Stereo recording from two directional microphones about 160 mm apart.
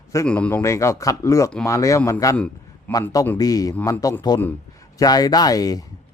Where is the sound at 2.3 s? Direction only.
5° left (ahead or behind).